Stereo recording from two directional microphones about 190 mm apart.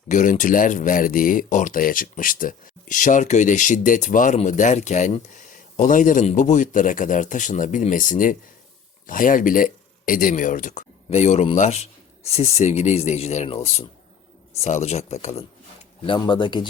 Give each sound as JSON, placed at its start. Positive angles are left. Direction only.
{"t": 0.1, "sound": "speech", "side_deg": 40}
{"t": 16.0, "sound": "speech", "side_deg": 25}